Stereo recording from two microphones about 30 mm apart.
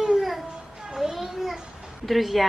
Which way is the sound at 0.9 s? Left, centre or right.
Centre.